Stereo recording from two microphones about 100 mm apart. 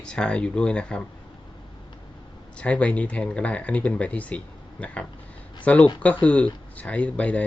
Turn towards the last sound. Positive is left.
turn(degrees=15)  # may be behind; listen again after turning